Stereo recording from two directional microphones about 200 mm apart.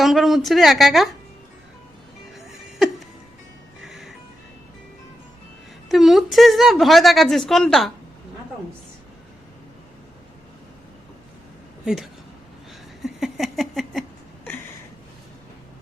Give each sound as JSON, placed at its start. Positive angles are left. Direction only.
{"t": 0.0, "sound": "speech", "side_deg": 0}
{"t": 2.3, "sound": "music", "side_deg": 0}
{"t": 5.9, "sound": "a woman's voice", "side_deg": 0}
{"t": 11.9, "sound": "a woman's voice", "side_deg": -5}
{"t": 13.0, "sound": "a sound", "side_deg": 0}